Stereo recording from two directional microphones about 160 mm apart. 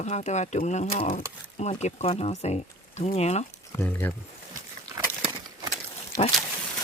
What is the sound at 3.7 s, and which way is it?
Speech, 10° left (ahead or behind).